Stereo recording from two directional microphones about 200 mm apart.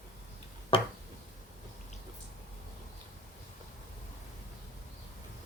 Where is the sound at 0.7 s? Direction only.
25° left (ahead or behind).